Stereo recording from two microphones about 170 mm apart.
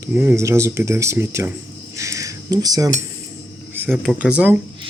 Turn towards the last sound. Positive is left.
turn(degrees=-10)  # may be behind; listen again after turning